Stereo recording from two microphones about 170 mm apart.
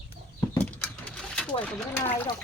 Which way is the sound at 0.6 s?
5° left (ahead or behind).